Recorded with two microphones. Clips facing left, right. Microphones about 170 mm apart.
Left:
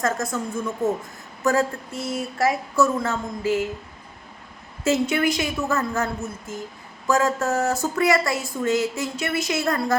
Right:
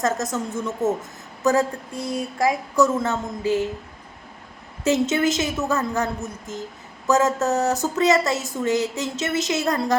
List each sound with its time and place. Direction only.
0.0 s a woman's voice: 20° right (ahead or behind)
0.6 s speech: centre (ahead or behind)
1.5 s a woman's voice: 15° right (ahead or behind)
4.8 s a woman's voice: 20° right (ahead or behind)